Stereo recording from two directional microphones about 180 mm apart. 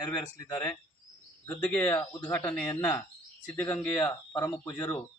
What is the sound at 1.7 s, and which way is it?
Speech, 10° left (ahead or behind).